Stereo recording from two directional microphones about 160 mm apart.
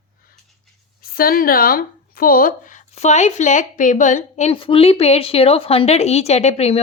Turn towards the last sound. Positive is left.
turn(degrees=40)  # may be behind; listen again after turning